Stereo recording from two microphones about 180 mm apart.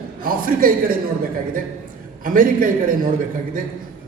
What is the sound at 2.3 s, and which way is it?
Speech, 50° right (ahead or behind).